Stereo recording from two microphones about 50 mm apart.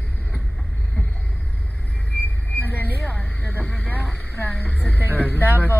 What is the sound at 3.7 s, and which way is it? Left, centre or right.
Speech, left.